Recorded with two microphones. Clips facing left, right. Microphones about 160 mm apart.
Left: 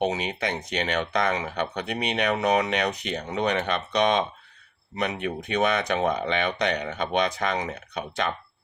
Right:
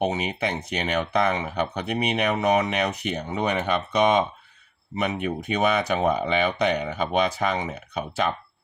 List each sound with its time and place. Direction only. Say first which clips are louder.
0.0 s speech: right 1 dB; 5° right (ahead or behind)